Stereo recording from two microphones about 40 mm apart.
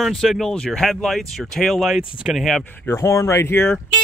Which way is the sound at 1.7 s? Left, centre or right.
Centre.